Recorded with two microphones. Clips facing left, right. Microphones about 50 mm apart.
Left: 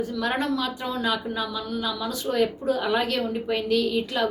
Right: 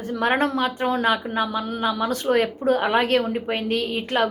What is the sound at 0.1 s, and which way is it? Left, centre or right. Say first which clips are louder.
A woman's voice: right 4 dB; right.